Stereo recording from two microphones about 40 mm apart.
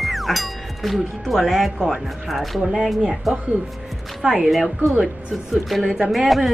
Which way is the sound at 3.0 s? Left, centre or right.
Centre.